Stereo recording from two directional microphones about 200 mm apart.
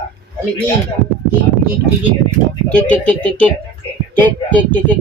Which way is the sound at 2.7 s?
5° left (ahead or behind).